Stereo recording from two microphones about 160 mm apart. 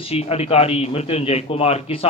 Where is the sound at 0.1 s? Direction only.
40° left (ahead or behind).